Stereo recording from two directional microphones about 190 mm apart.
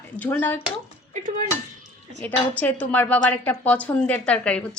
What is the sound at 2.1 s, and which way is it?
A woman's voice, 5° left (ahead or behind).